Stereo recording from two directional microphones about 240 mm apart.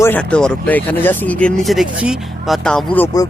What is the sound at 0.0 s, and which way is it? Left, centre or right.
Speech, centre.